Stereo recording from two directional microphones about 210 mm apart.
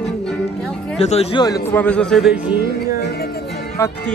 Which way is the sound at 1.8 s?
5° left (ahead or behind).